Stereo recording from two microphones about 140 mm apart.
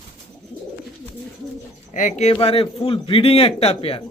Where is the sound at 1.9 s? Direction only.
60° left (ahead or behind).